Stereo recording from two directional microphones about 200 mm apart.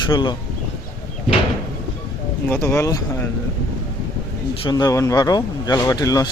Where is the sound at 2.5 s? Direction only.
15° left (ahead or behind).